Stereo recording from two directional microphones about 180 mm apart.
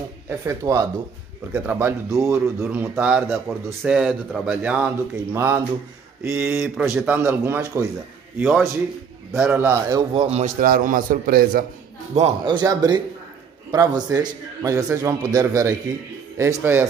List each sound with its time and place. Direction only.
0.3 s a man's voice: 20° right (ahead or behind)
10.2 s a man's voice: 35° right (ahead or behind)
10.6 s a man's voice: 50° right (ahead or behind)
12.1 s a man's voice: 35° right (ahead or behind)
12.4 s a man's voice: 20° right (ahead or behind)